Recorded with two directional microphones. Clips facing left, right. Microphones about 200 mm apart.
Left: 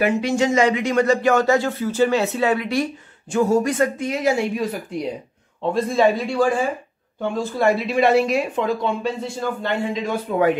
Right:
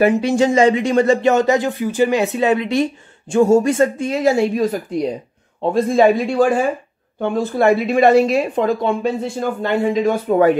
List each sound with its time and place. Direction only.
0.0 s speech: 35° right (ahead or behind)
5.6 s a man's voice: 45° right (ahead or behind)
8.3 s speech: 40° right (ahead or behind)
9.0 s a man's voice: 50° right (ahead or behind)